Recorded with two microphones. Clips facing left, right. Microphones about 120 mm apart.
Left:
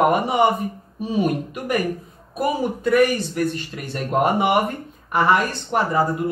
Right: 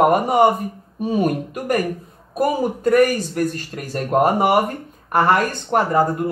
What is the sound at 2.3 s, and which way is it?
Speech, 45° right (ahead or behind).